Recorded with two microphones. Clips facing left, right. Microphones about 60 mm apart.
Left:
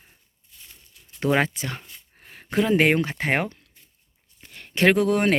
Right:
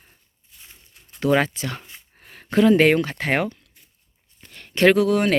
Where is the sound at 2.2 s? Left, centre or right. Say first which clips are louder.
Right 6 dB; centre; by 3.5 s left.